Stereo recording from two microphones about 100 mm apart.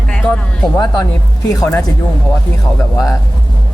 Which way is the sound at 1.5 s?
35° left (ahead or behind).